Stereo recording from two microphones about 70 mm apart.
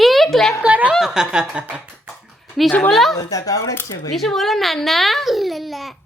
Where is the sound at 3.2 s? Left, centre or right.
Left.